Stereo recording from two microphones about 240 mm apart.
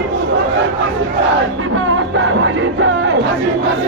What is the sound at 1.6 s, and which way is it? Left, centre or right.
Music, right.